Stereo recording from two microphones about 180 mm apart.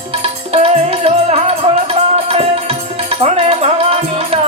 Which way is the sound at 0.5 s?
35° right (ahead or behind).